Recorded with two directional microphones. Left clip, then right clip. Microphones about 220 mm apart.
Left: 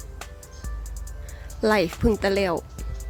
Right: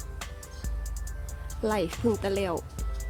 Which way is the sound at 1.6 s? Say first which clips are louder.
Left 7 dB; 25° left (ahead or behind).